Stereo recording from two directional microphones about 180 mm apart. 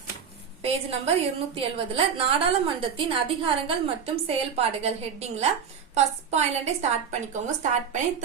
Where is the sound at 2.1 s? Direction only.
30° right (ahead or behind).